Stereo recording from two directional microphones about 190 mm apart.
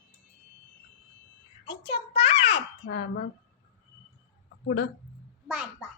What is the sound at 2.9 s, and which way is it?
Speech, 50° left (ahead or behind).